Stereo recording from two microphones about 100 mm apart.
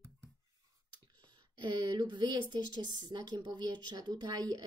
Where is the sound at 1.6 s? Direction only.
50° right (ahead or behind).